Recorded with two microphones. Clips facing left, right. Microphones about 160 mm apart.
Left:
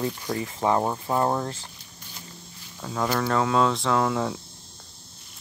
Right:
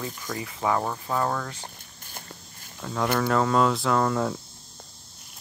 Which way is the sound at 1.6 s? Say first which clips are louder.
Right 3 dB; 45° right (ahead or behind).